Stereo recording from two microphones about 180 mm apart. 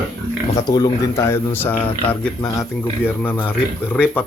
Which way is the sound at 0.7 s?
20° left (ahead or behind).